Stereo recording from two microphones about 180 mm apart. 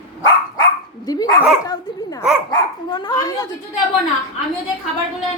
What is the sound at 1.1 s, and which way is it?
A woman's voice, 20° left (ahead or behind).